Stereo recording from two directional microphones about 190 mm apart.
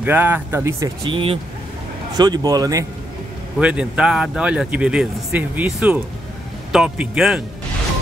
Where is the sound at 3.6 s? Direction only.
5° right (ahead or behind).